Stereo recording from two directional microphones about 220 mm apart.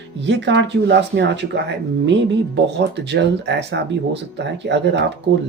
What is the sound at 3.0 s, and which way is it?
Speech, 50° right (ahead or behind).